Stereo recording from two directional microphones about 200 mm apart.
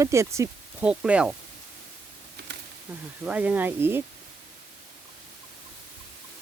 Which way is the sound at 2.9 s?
10° right (ahead or behind).